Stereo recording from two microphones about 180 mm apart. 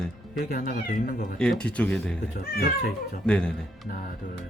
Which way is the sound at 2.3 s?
55° left (ahead or behind).